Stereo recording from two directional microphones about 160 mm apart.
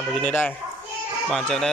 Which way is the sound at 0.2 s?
10° left (ahead or behind).